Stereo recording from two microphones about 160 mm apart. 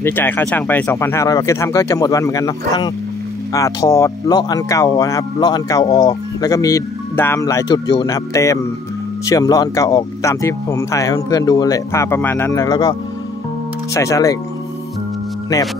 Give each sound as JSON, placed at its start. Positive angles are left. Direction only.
{"t": 0.0, "sound": "speech", "side_deg": 15}
{"t": 13.9, "sound": "speech", "side_deg": 20}